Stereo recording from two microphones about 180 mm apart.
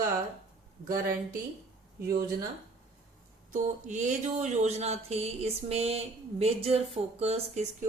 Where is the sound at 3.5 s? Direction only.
45° right (ahead or behind).